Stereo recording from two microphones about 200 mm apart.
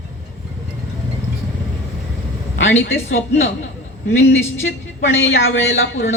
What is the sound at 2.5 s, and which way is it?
Speech, 70° left (ahead or behind).